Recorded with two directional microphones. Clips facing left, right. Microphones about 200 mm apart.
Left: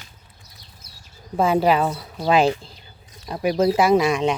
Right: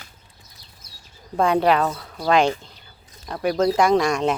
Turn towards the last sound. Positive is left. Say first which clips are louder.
# left 1 dB
turn(degrees=0)  # may be behind; listen again after turning